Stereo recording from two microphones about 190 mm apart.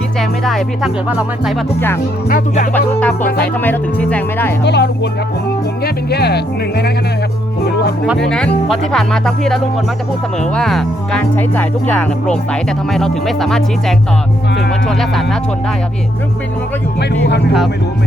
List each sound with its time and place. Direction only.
0.2 s speech: centre (ahead or behind)
2.7 s speech: 10° left (ahead or behind)
4.6 s speech: 65° left (ahead or behind)
8.0 s speech: centre (ahead or behind)
17.0 s speech: 60° left (ahead or behind)